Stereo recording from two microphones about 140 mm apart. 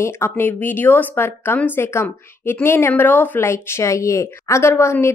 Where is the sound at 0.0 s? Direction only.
20° left (ahead or behind).